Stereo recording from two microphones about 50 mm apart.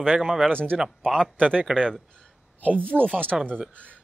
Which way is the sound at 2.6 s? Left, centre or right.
Right.